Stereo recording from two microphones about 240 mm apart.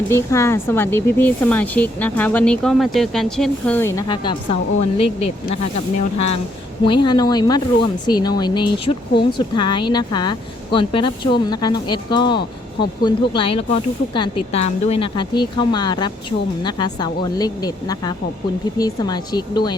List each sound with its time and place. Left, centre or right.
0.1 s a woman's voice: centre
6.8 s a woman's voice: centre